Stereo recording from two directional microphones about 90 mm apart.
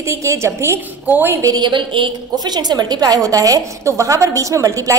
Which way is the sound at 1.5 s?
60° right (ahead or behind).